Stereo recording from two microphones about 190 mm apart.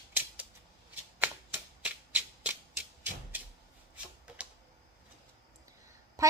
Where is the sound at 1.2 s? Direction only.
10° right (ahead or behind).